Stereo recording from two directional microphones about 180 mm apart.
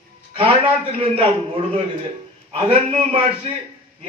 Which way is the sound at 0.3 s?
30° right (ahead or behind).